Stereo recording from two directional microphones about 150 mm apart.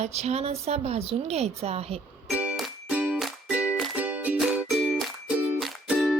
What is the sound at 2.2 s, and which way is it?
Music, 10° right (ahead or behind).